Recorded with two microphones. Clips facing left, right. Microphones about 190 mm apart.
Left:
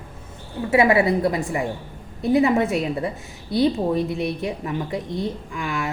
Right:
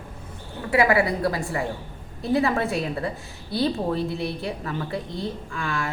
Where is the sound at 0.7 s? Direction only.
25° left (ahead or behind).